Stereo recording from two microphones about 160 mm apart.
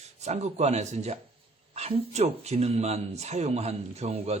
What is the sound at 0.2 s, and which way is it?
Speech, 45° right (ahead or behind).